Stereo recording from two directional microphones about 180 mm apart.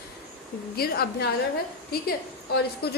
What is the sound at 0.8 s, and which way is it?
Speech, 60° left (ahead or behind).